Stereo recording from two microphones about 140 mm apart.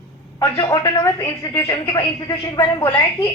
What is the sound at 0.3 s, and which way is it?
A woman's voice, 25° left (ahead or behind).